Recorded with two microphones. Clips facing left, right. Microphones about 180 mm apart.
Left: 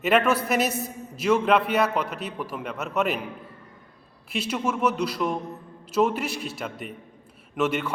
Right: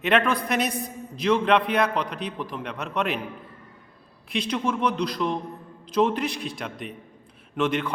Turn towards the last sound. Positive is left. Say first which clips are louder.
# even
turn(degrees=5)  # may be behind; listen again after turning